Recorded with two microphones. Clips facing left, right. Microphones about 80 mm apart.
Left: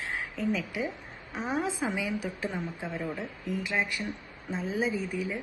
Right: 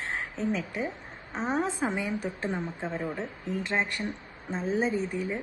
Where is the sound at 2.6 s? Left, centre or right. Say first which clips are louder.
Right 2 dB; right.